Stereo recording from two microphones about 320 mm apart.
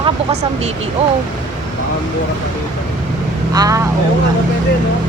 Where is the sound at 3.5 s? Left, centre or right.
Centre.